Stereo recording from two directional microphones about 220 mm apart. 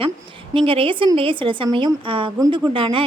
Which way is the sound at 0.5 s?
25° right (ahead or behind).